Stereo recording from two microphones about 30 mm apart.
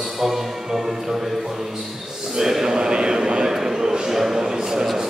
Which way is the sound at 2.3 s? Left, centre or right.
Centre.